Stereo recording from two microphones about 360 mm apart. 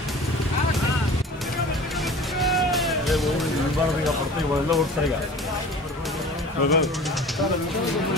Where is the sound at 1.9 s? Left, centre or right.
Centre.